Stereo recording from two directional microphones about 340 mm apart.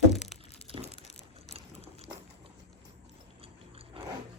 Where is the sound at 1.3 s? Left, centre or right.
Centre.